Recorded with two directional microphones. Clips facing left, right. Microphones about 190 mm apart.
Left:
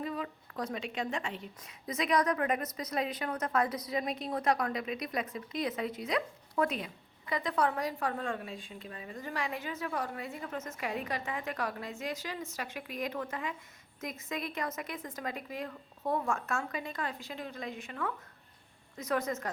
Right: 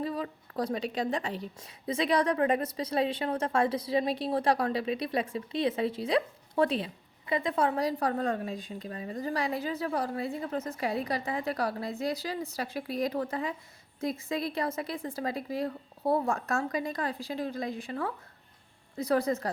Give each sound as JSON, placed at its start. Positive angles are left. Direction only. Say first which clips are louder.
{"t": 0.0, "sound": "a woman's voice", "louder": "right 4 dB", "side_deg": -35}